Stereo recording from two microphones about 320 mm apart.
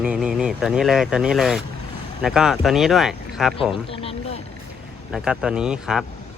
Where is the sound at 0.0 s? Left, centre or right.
Centre.